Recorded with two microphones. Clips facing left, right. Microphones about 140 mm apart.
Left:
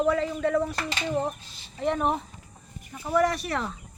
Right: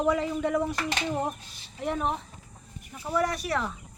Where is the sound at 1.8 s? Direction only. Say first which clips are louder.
Left 4 dB; 5° right (ahead or behind).